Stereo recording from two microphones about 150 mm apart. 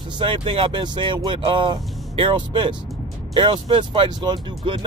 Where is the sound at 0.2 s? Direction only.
35° right (ahead or behind).